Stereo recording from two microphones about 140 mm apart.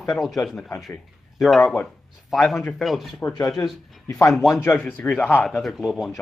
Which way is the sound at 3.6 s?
20° left (ahead or behind).